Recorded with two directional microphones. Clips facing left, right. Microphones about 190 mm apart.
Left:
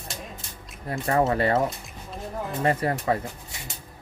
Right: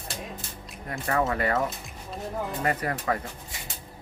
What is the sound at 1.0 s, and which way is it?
Speech, 30° left (ahead or behind).